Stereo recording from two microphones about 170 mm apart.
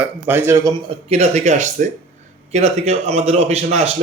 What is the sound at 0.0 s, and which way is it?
Speech, 10° right (ahead or behind).